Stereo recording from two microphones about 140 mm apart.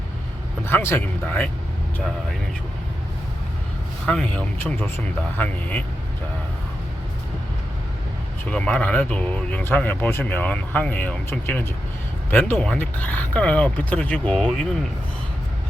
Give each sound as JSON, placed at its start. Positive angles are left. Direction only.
{"t": 0.6, "sound": "speech", "side_deg": 15}
{"t": 4.0, "sound": "speech", "side_deg": 5}
{"t": 8.4, "sound": "speech", "side_deg": 10}